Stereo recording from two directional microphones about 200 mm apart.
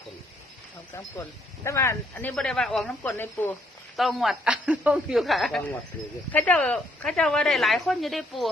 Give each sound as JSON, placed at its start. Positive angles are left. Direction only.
{"t": 1.6, "sound": "a woman's voice", "side_deg": 15}